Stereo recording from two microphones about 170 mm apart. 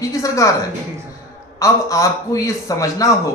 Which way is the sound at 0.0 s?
20° left (ahead or behind).